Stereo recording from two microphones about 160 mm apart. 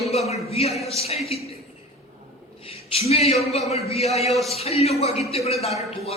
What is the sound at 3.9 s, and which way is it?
Speech, 40° left (ahead or behind).